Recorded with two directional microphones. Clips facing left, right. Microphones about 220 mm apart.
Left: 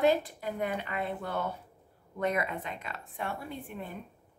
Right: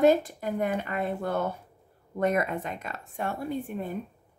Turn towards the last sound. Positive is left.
turn(degrees=-45)  # may be behind; listen again after turning